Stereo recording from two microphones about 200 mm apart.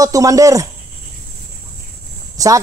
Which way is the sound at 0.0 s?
15° right (ahead or behind).